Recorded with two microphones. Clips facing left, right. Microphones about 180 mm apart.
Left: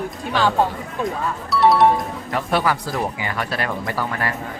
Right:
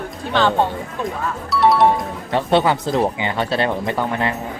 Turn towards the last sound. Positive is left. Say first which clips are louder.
# right 4 dB
turn(degrees=-25)  # may be behind; listen again after turning